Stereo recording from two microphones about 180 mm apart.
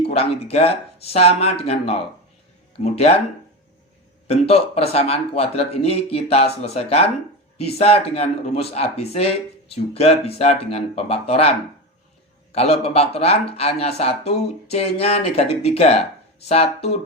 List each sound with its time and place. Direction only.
0.0 s speech: 35° left (ahead or behind)
4.3 s speech: 35° left (ahead or behind)